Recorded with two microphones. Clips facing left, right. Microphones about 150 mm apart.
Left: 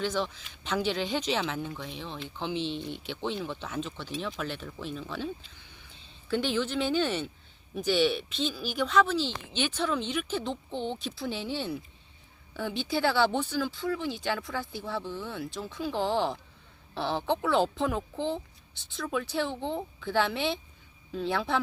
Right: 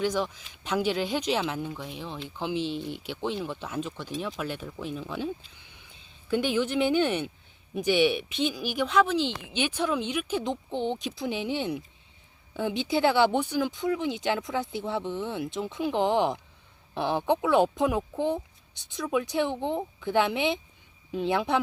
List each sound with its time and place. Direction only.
0.0 s speech: 10° right (ahead or behind)